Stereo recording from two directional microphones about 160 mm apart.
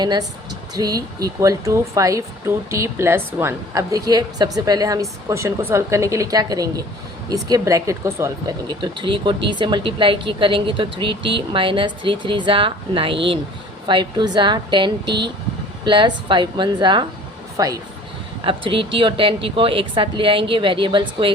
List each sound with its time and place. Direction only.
0.0 s a woman's voice: 25° right (ahead or behind)
18.4 s speech: 35° right (ahead or behind)